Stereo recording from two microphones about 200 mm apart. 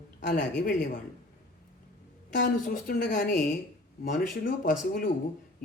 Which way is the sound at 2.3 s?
55° left (ahead or behind).